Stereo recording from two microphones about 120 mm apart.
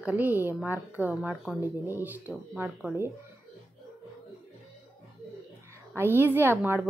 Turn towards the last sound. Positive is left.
turn(degrees=-20)  # may be behind; listen again after turning